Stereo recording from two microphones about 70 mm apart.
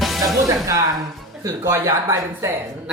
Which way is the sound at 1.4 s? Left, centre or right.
Right.